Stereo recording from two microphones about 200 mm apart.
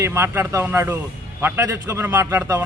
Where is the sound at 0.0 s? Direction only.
15° right (ahead or behind).